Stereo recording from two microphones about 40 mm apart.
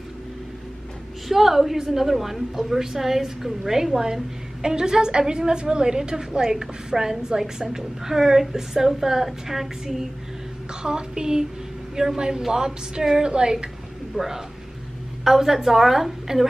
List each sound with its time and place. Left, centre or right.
1.3 s a woman's voice: centre
10.7 s a woman's voice: centre
14.1 s a woman's voice: centre